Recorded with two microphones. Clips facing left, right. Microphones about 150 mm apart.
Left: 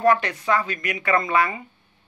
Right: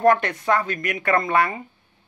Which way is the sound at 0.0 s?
55° right (ahead or behind).